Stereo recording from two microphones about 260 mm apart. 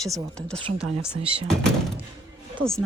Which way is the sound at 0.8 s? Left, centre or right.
Centre.